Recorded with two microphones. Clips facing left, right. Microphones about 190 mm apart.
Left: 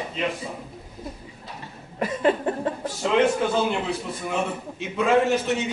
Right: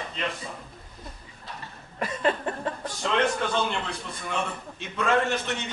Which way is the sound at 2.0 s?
15° left (ahead or behind).